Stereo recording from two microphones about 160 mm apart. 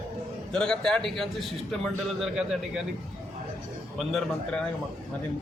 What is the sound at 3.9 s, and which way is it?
Speech, centre (ahead or behind).